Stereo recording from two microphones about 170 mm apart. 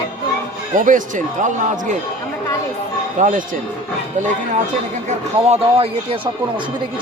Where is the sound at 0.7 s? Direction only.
50° right (ahead or behind).